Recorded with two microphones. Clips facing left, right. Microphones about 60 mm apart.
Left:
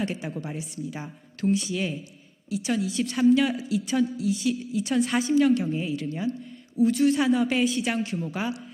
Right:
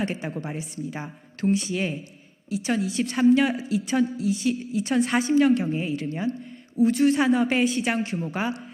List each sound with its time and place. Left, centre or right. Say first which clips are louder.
0.0 s speech: right 2 dB; right
2.8 s a woman's voice: right 1 dB; right
3.8 s a woman's voice: right 1 dB; right
6.1 s speech: right 1 dB; right
6.7 s speech: right 1 dB; right
7.6 s a woman's voice: right 1 dB; right